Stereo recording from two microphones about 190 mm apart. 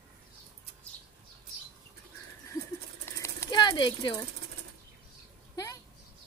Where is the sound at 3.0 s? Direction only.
15° left (ahead or behind).